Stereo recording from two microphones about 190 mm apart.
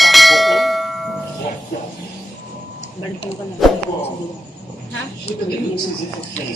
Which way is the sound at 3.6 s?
Centre (ahead or behind).